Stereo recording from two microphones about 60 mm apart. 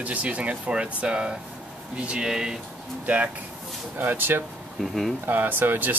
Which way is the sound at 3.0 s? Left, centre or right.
Right.